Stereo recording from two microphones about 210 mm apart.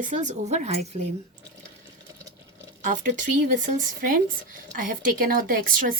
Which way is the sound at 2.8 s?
40° right (ahead or behind).